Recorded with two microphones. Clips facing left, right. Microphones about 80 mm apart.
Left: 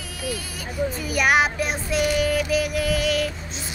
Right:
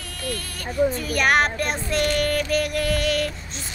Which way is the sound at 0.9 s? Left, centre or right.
Centre.